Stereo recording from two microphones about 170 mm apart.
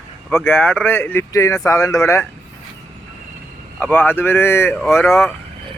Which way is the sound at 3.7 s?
10° left (ahead or behind).